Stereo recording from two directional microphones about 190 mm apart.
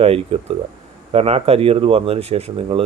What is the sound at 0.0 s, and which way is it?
Speech, 30° right (ahead or behind).